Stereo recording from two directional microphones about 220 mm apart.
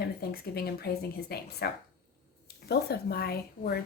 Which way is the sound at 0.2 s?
45° left (ahead or behind).